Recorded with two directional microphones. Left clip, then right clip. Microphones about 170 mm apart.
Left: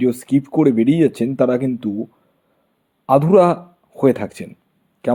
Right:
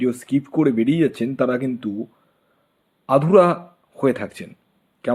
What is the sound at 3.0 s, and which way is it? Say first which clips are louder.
A man's voice: left 2 dB; 30° left (ahead or behind).